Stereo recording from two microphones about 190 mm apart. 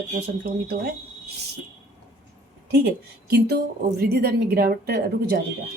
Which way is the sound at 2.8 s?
55° right (ahead or behind).